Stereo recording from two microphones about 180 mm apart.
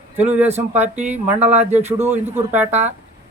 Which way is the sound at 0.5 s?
10° right (ahead or behind).